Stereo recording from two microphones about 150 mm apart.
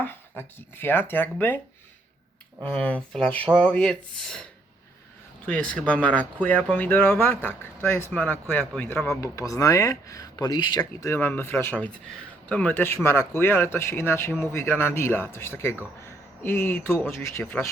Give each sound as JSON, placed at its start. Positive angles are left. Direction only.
{"t": 0.0, "sound": "speech", "side_deg": 15}
{"t": 2.6, "sound": "speech", "side_deg": 5}
{"t": 5.5, "sound": "speech", "side_deg": 10}